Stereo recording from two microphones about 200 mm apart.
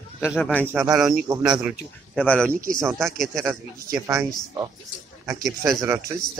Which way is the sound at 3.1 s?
Centre (ahead or behind).